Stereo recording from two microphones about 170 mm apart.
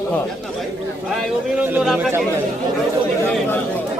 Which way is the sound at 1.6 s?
10° right (ahead or behind).